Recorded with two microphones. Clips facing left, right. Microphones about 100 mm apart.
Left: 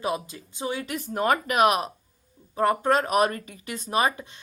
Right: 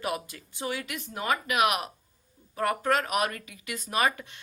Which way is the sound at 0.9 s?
45° left (ahead or behind).